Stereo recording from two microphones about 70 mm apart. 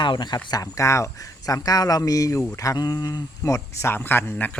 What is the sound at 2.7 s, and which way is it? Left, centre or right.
Speech, left.